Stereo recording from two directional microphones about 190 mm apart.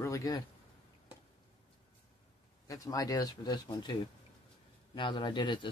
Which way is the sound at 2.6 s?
20° left (ahead or behind).